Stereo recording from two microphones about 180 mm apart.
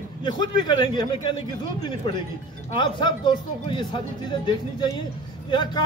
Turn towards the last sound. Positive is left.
turn(degrees=25)  # may be behind; listen again after turning